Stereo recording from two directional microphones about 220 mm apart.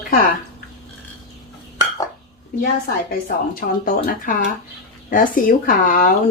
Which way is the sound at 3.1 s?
40° left (ahead or behind).